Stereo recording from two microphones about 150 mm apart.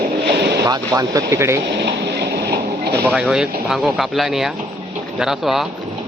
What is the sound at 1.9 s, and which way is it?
Vehicle, 90° right.